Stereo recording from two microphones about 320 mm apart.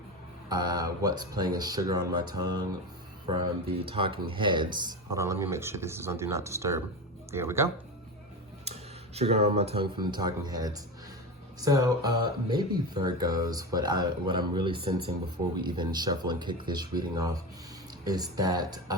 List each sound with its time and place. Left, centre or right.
0.4 s speech: centre
8.6 s speech: centre